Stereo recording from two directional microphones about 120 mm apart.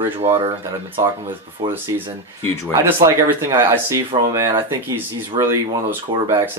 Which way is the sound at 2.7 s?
25° right (ahead or behind).